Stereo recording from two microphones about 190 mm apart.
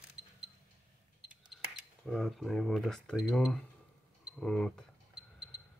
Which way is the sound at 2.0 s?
Centre (ahead or behind).